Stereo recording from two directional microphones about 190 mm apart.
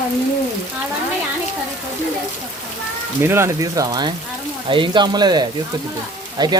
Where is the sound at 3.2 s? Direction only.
15° right (ahead or behind).